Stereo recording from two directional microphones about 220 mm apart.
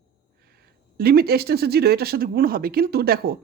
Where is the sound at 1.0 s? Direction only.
45° right (ahead or behind).